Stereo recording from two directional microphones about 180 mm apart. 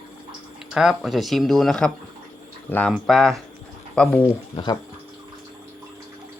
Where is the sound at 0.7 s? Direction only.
Centre (ahead or behind).